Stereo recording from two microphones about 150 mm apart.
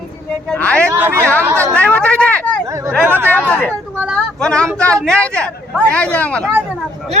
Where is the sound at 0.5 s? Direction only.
10° left (ahead or behind).